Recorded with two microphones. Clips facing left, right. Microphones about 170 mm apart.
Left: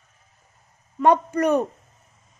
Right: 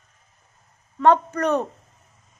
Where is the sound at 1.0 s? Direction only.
10° left (ahead or behind).